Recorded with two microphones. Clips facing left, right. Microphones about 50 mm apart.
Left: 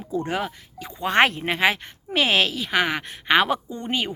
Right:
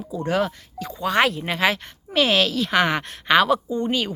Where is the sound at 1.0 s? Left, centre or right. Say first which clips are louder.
Left 1 dB; left.